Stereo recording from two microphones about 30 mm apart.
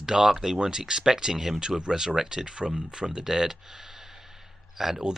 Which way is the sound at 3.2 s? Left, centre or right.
Centre.